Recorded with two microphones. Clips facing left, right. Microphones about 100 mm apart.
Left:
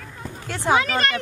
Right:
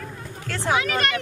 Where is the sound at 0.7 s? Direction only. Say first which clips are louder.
Left 3 dB; 35° left (ahead or behind).